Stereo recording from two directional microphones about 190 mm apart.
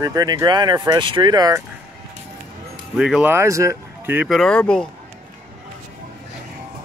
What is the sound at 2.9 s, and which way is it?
Speech, 5° right (ahead or behind).